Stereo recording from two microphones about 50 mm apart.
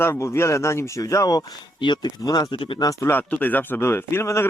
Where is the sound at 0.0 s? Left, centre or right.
Left.